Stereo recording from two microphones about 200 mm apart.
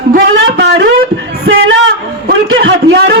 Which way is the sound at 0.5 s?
60° right (ahead or behind).